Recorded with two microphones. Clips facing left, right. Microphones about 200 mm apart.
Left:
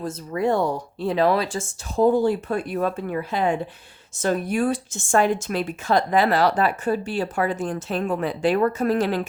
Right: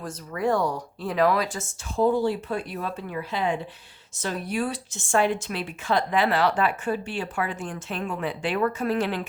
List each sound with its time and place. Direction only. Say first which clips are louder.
0.0 s speech: left 3 dB; 25° left (ahead or behind)
2.0 s speech: left 4 dB; 45° left (ahead or behind)